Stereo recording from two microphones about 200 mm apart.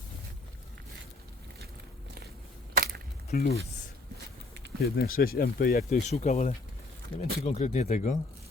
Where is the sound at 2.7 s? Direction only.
50° right (ahead or behind).